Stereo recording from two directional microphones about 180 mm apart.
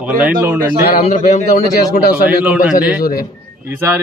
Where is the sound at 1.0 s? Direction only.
45° left (ahead or behind).